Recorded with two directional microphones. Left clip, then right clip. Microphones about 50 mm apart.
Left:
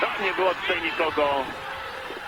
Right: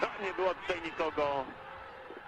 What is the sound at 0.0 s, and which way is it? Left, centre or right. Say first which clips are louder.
Speech: left 9 dB; left.